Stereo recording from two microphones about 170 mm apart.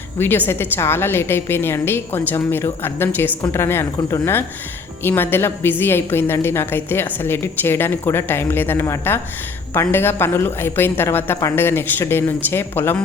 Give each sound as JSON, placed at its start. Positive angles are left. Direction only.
{"t": 0.2, "sound": "a woman's voice", "side_deg": 10}